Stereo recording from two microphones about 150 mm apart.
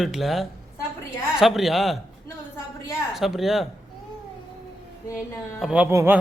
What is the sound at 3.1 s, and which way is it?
Speech, centre (ahead or behind).